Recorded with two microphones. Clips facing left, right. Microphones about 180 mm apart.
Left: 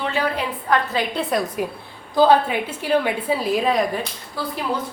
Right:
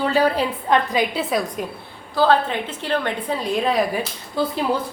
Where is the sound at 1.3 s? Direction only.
Centre (ahead or behind).